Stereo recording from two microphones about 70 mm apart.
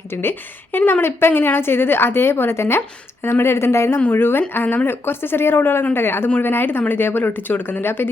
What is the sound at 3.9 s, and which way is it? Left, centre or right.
Speech, left.